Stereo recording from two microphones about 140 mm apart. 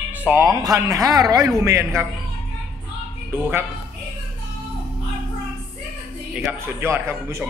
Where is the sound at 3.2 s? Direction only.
15° right (ahead or behind).